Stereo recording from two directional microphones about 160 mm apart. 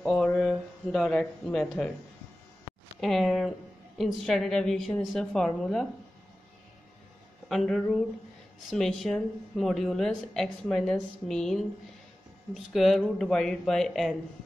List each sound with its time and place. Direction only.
0.0 s speech: 5° left (ahead or behind)
3.0 s a woman's voice: centre (ahead or behind)
7.4 s a woman's voice: centre (ahead or behind)
12.7 s a woman's voice: centre (ahead or behind)